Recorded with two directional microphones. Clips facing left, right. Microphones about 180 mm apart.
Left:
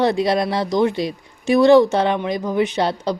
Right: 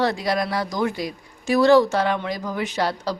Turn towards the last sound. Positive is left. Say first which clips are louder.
# left 4 dB
turn(degrees=20)  # may be behind; listen again after turning